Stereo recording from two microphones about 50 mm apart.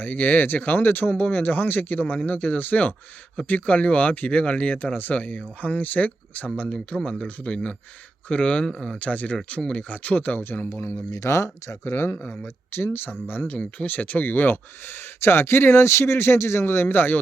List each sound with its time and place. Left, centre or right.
0.0 s speech: left
8.6 s speech: centre
9.0 s speech: left
10.4 s speech: left
10.8 s speech: left
12.7 s speech: left